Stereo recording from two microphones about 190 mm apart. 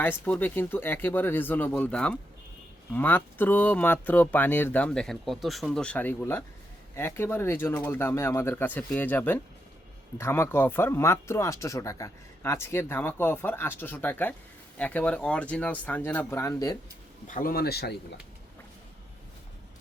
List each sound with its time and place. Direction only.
0.0 s speech: 10° left (ahead or behind)
17.2 s speech: 45° left (ahead or behind)